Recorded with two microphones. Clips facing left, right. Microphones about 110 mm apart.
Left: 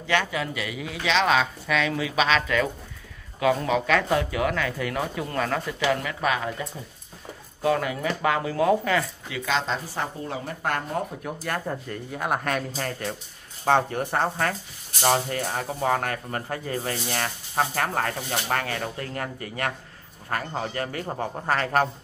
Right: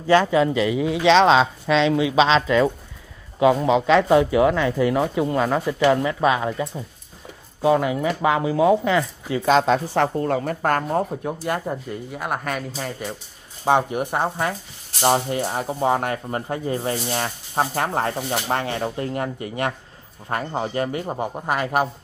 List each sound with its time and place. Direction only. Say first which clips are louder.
0.0 s speech: right 9 dB; 30° right (ahead or behind)
9.5 s speech: right 9 dB; 55° right (ahead or behind)
11.2 s speech: right 5 dB; 20° right (ahead or behind)